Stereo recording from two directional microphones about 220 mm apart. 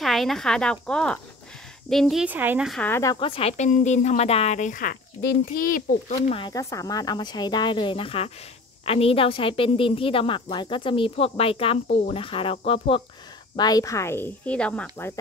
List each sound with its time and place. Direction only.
0.0 s a woman's voice: centre (ahead or behind); by 6.3 s 40° left (ahead or behind)
6.3 s a woman's voice: 20° left (ahead or behind)